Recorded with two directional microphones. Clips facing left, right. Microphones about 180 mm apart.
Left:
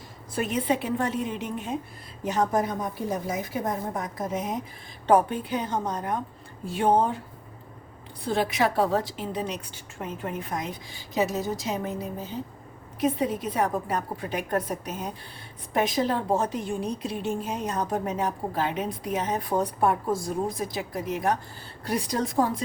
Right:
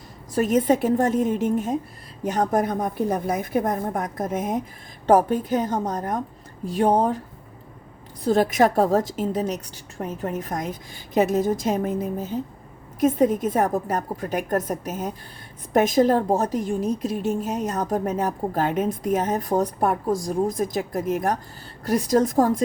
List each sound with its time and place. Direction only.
0.3 s a woman's voice: 45° right (ahead or behind)
8.2 s a woman's voice: 45° right (ahead or behind)